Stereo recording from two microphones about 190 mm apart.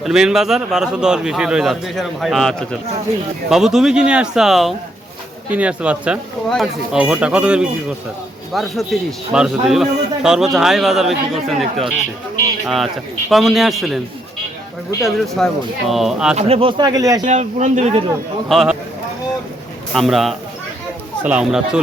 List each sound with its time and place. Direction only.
0.0 s a man's voice: centre (ahead or behind)
15.0 s a man's voice: centre (ahead or behind)
16.3 s speech: 35° right (ahead or behind)
17.2 s speech: 40° right (ahead or behind)
18.4 s a man's voice: centre (ahead or behind)
19.9 s a man's voice: centre (ahead or behind)